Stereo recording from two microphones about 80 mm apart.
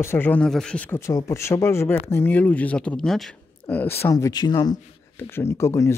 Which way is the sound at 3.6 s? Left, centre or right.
Left.